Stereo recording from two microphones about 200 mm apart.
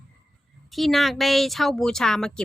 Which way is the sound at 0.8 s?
Centre (ahead or behind).